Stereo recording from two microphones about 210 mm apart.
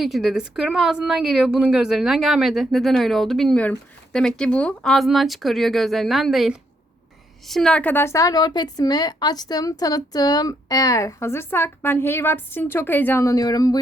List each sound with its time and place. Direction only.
0.0 s a woman's voice: centre (ahead or behind); by 13.7 s 15° left (ahead or behind)